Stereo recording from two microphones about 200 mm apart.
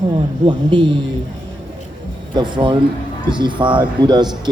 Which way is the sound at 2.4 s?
25° right (ahead or behind).